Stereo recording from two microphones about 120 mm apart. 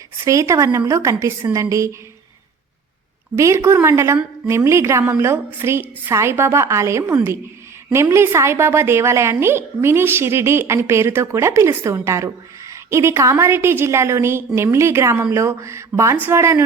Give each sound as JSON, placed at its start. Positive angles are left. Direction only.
{"t": 0.3, "sound": "a woman's voice", "side_deg": -25}
{"t": 3.3, "sound": "a woman's voice", "side_deg": -25}